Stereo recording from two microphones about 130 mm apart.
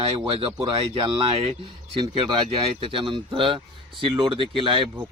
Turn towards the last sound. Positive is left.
turn(degrees=-40)  # may be behind; listen again after turning